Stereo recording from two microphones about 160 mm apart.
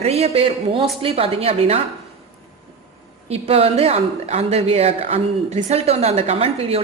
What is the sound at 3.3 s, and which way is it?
Speech, 40° right (ahead or behind).